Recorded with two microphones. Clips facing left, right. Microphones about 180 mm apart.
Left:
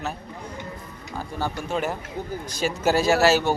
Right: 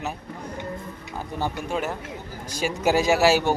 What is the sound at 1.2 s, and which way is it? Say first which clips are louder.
Speech: even; 20° right (ahead or behind).